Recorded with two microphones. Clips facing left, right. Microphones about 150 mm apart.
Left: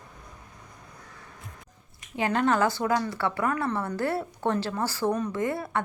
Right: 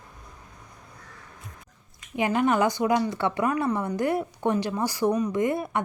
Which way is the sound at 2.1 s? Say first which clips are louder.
Right 2 dB; 10° right (ahead or behind).